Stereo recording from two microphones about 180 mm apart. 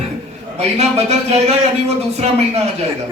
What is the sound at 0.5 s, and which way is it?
A man's voice, 35° right (ahead or behind).